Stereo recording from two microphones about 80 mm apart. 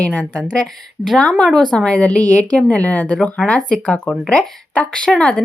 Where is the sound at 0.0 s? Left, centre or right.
Centre.